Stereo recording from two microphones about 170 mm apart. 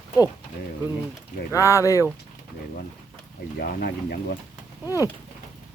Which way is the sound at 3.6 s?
60° left (ahead or behind).